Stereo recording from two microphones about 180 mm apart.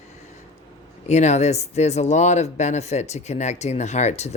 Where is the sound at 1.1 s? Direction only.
40° left (ahead or behind).